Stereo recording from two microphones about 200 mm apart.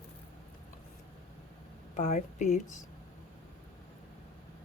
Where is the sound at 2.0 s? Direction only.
35° left (ahead or behind).